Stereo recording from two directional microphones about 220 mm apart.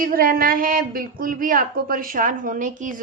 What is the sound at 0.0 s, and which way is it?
A woman's voice, 40° right (ahead or behind).